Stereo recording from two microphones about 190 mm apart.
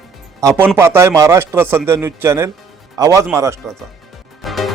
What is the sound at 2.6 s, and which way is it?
Music, centre (ahead or behind).